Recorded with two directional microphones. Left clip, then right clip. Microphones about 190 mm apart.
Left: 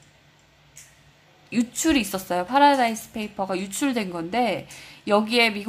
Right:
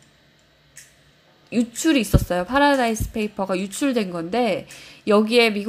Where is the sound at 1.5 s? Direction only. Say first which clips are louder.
Right 2 dB; centre (ahead or behind).